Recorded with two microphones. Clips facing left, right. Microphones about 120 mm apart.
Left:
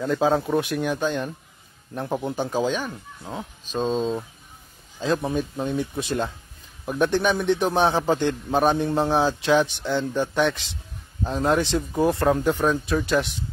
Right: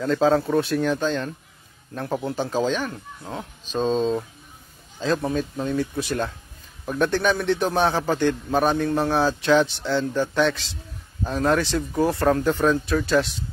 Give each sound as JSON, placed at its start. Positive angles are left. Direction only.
{"t": 0.0, "sound": "a man's voice", "side_deg": 10}
{"t": 5.0, "sound": "a man's voice", "side_deg": 15}